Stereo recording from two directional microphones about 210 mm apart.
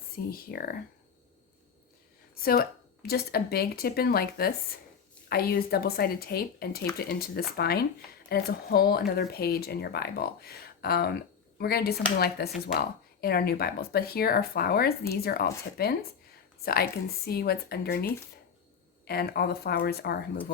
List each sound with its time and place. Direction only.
0.3 s speech: 45° left (ahead or behind)
2.4 s speech: 45° left (ahead or behind)
16.6 s speech: 45° left (ahead or behind)